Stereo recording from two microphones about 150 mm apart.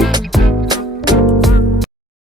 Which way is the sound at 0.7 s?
30° right (ahead or behind).